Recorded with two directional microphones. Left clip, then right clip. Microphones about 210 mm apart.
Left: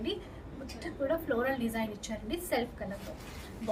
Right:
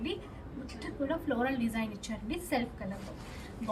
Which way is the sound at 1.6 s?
15° left (ahead or behind).